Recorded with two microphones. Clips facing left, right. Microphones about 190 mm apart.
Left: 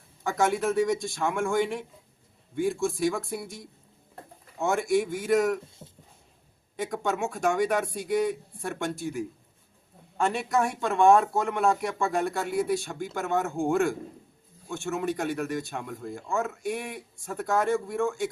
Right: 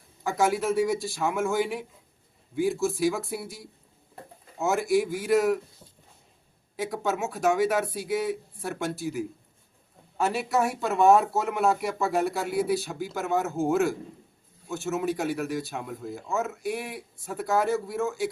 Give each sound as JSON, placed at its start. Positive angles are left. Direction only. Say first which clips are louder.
{"t": 0.2, "sound": "speech", "louder": "right 1 dB", "side_deg": 0}
{"t": 5.8, "sound": "a sound", "louder": "left 6 dB", "side_deg": 25}
{"t": 6.7, "sound": "speech", "louder": "even", "side_deg": 0}